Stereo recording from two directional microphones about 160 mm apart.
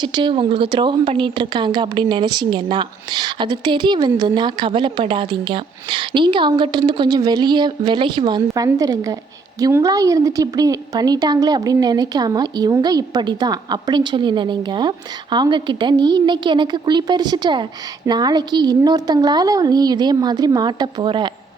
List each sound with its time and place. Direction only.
0.0 s a woman's voice: 30° right (ahead or behind)